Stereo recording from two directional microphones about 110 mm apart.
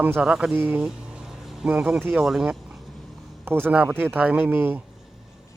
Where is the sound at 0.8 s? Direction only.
10° right (ahead or behind).